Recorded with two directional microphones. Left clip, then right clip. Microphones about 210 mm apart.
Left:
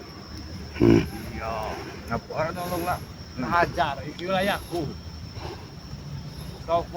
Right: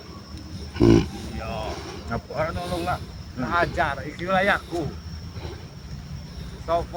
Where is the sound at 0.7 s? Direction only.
15° right (ahead or behind).